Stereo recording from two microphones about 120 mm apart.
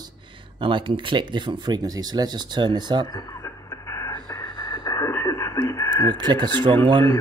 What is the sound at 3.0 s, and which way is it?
Radio, 30° left (ahead or behind).